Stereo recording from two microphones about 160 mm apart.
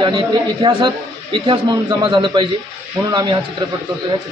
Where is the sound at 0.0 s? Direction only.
30° right (ahead or behind).